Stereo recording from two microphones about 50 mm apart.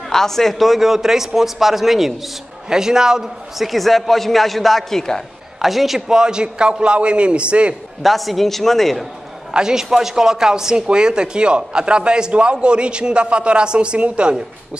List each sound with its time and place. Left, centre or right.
0.1 s a man's voice: centre
5.6 s speech: centre; by 7.7 s right
8.0 s a man's voice: centre
9.5 s speech: centre